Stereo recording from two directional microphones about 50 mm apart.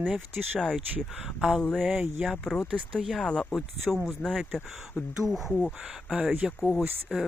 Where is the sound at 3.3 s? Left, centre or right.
Left.